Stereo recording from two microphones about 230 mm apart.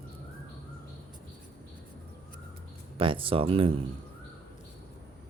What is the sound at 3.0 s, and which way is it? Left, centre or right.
Speech, right.